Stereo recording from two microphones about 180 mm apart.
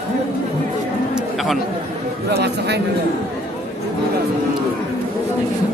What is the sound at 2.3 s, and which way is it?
Speech, 65° right (ahead or behind).